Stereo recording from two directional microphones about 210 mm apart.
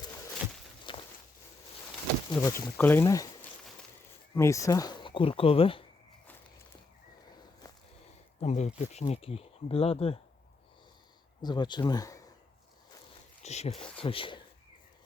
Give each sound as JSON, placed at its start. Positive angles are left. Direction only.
{"t": 0.9, "sound": "a sound", "side_deg": 20}
{"t": 2.4, "sound": "speech", "side_deg": 10}
{"t": 4.4, "sound": "speech", "side_deg": 15}
{"t": 7.6, "sound": "a sound", "side_deg": 15}
{"t": 8.4, "sound": "speech", "side_deg": 35}
{"t": 11.4, "sound": "speech", "side_deg": 20}
{"t": 13.4, "sound": "speech", "side_deg": 30}